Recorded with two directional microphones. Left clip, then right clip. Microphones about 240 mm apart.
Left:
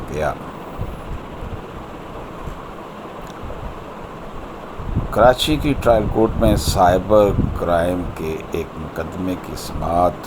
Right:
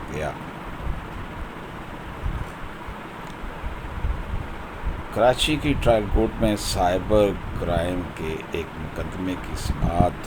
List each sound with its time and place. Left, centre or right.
0.1 s speech: centre
5.1 s speech: centre